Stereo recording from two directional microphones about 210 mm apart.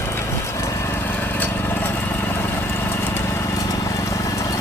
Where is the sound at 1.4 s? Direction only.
10° left (ahead or behind).